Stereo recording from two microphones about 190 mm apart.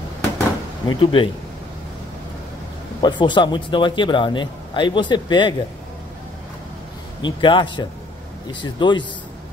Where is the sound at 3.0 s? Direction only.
25° left (ahead or behind).